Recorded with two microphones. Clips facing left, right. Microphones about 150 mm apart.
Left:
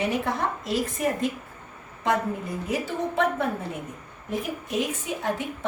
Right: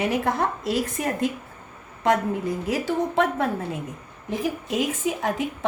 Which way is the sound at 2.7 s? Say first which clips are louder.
Right 3 dB; 90° right.